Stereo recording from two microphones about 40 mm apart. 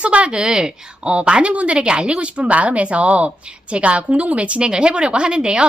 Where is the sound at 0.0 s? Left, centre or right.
Right.